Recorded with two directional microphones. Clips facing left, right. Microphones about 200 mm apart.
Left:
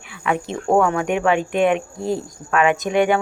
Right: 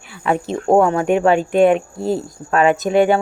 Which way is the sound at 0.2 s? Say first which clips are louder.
Right 4 dB; 35° right (ahead or behind).